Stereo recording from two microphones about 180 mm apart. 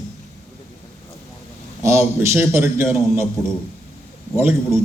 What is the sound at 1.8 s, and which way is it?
A man's voice, 15° right (ahead or behind).